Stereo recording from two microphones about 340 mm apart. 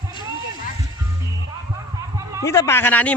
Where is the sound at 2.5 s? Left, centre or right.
Centre.